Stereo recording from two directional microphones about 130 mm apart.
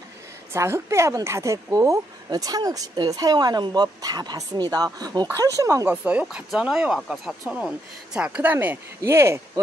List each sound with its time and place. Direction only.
0.5 s a woman's voice: 20° right (ahead or behind)
6.0 s speech: 10° right (ahead or behind)